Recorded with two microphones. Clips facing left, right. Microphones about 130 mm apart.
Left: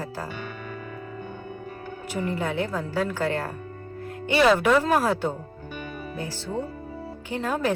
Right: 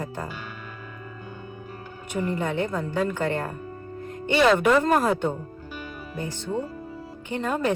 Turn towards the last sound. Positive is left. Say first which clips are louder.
# right 1 dB
turn(degrees=0)  # may be behind; listen again after turning